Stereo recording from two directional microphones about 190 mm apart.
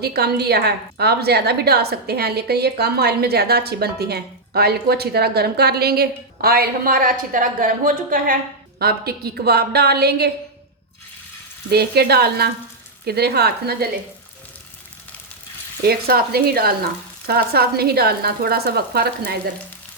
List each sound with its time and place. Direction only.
0.0 s a woman's voice: 55° right (ahead or behind)
11.7 s a woman's voice: 55° right (ahead or behind)
15.8 s a woman's voice: 55° right (ahead or behind)